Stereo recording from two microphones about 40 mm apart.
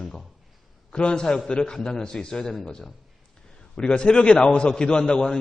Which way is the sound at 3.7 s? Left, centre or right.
Left.